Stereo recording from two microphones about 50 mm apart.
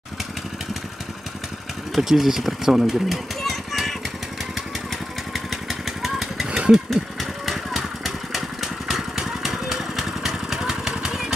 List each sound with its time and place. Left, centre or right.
2.0 s speech: centre
3.3 s a sound: centre
5.3 s vehicle: centre
6.4 s vehicle: centre
6.9 s vehicle: centre